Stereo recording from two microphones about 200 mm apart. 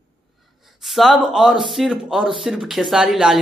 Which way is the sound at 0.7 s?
Centre (ahead or behind).